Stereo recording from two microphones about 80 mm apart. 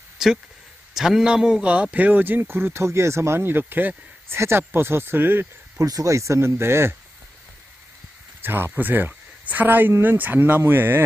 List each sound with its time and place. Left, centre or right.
0.2 s speech: centre; by 5.5 s right
5.8 s speech: right
8.4 s speech: right